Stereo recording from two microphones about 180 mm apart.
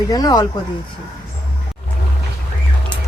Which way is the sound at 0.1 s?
20° left (ahead or behind).